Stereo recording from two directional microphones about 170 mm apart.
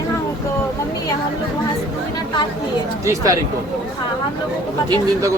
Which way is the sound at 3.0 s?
20° right (ahead or behind).